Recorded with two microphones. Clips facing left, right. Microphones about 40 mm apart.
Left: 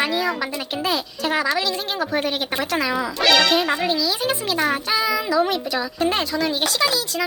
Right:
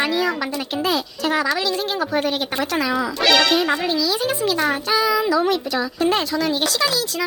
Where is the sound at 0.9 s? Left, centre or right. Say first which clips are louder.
Right 1 dB; left.